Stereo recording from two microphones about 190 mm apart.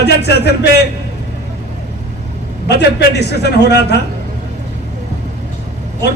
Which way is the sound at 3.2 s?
60° left (ahead or behind).